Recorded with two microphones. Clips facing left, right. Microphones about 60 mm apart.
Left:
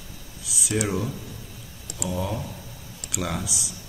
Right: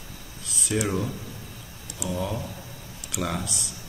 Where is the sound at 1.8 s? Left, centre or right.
Left.